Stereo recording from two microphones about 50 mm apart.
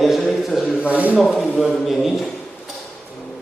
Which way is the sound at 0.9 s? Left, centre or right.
Right.